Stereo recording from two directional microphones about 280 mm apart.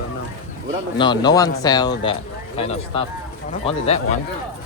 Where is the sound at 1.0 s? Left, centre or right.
Centre.